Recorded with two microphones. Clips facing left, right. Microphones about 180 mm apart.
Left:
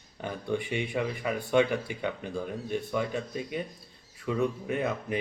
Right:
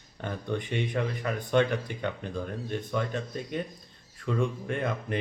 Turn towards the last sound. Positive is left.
turn(degrees=5)  # may be behind; listen again after turning